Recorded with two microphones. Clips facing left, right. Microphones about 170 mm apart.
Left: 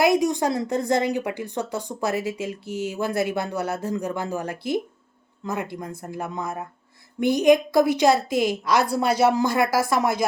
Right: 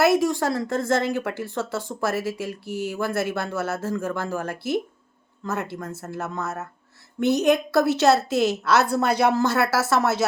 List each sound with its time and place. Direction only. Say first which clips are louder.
0.0 s a woman's voice: even; 20° left (ahead or behind)